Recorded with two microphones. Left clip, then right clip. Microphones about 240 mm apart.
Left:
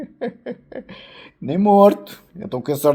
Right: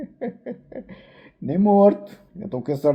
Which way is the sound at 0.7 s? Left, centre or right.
Left.